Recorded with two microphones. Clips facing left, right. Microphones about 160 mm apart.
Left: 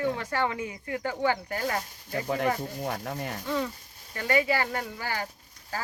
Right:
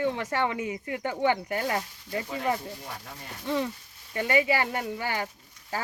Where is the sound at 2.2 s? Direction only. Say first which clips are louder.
Left 3 dB; 50° left (ahead or behind).